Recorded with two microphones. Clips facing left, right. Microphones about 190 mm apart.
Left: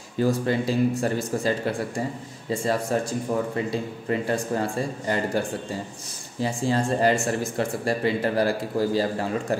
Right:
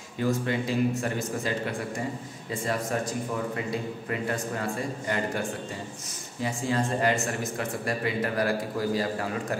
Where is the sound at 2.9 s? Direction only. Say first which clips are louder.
Left 5 dB; 30° left (ahead or behind).